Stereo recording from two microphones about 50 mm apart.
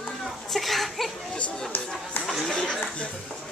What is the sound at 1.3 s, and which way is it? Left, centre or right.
Chatter, centre.